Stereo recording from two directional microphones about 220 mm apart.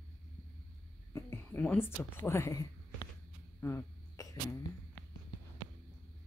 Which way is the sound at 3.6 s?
10° left (ahead or behind).